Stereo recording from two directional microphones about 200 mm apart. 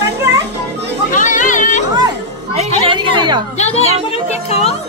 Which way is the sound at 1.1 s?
40° left (ahead or behind).